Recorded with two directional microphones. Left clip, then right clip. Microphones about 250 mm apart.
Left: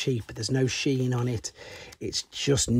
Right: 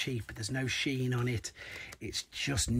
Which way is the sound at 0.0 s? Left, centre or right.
Left.